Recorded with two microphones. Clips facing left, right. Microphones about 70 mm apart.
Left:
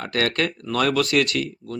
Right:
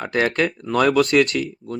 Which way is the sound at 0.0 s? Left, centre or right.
Right.